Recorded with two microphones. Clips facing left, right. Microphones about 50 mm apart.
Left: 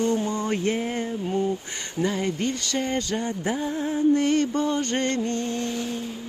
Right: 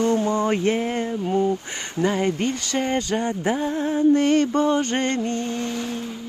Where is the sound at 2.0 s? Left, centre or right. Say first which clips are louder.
Right 4 dB; right.